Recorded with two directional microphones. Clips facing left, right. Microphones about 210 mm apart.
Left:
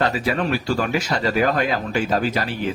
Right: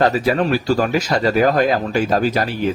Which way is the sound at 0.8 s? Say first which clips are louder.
Right 4 dB; 40° right (ahead or behind).